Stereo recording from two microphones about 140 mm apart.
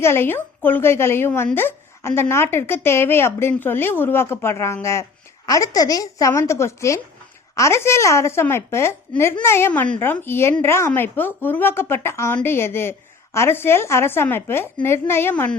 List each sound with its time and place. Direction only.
0.0 s a woman's voice: 15° left (ahead or behind)